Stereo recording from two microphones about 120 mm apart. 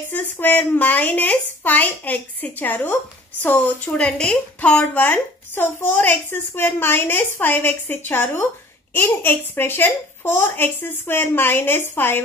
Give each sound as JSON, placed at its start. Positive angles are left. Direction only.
{"t": 0.1, "sound": "speech", "side_deg": 15}